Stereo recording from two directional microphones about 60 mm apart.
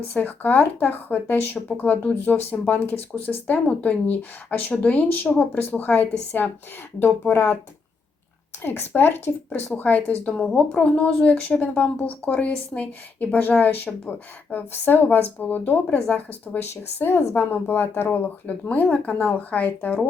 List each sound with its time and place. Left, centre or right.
0.1 s a woman's voice: left
8.6 s a woman's voice: left
10.3 s a woman's voice: centre; by 16.6 s left
16.6 s a woman's voice: left
18.7 s speech: left